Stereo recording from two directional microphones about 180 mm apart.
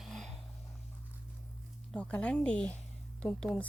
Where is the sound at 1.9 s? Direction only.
5° left (ahead or behind).